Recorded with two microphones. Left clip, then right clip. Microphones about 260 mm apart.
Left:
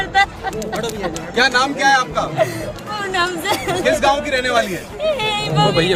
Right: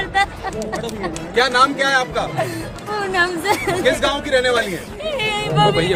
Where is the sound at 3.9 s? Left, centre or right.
Centre.